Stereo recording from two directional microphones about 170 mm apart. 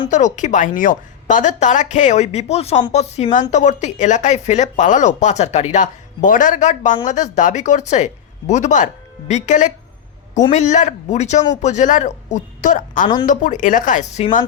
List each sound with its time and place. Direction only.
0.1 s speech: 45° left (ahead or behind)